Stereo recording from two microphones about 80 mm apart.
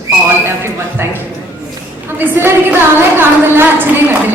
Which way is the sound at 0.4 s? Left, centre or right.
Right.